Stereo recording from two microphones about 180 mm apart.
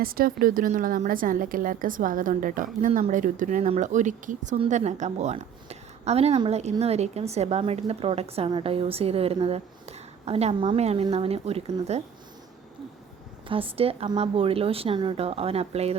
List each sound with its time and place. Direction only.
0.0 s a woman's voice: 55° right (ahead or behind); by 12.0 s 35° right (ahead or behind)
13.5 s a woman's voice: 30° right (ahead or behind)